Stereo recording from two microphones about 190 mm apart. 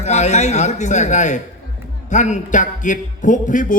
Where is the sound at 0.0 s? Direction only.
35° left (ahead or behind).